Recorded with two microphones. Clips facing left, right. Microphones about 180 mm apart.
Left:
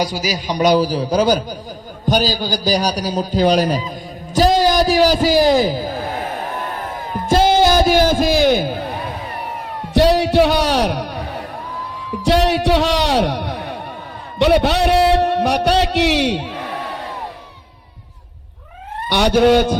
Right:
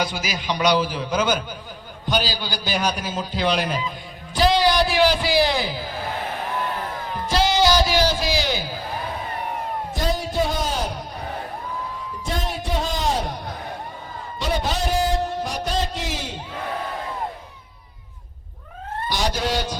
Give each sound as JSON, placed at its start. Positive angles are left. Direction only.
{"t": 0.0, "sound": "a man's voice", "side_deg": 40}
{"t": 7.3, "sound": "a man's voice", "side_deg": 50}
{"t": 9.9, "sound": "a man's voice", "side_deg": 75}
{"t": 19.0, "sound": "speech", "side_deg": 65}